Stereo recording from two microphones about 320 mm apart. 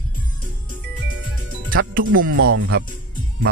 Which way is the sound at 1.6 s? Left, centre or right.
Right.